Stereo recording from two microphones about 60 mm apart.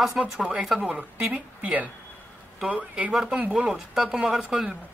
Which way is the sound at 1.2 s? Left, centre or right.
Right.